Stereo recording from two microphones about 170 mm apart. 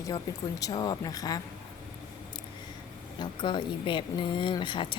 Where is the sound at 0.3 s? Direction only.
20° left (ahead or behind).